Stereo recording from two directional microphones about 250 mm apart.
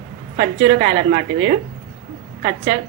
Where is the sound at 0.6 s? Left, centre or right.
Right.